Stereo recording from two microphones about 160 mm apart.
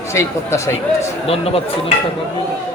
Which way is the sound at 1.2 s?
40° left (ahead or behind).